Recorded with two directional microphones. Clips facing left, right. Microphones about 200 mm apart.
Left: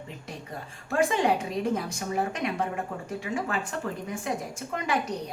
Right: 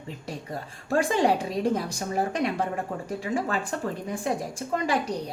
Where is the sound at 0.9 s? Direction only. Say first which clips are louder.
Right 2 dB; 35° right (ahead or behind).